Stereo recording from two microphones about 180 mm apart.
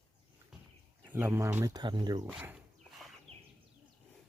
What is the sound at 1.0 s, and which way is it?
Speech, 10° right (ahead or behind).